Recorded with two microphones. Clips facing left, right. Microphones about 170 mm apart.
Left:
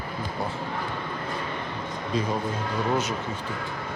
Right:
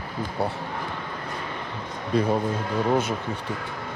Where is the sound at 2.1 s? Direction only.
60° right (ahead or behind).